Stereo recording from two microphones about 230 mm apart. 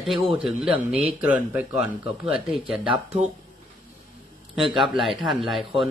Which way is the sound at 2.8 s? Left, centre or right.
Right.